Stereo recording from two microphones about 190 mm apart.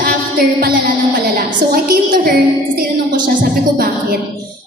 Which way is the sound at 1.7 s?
50° right (ahead or behind).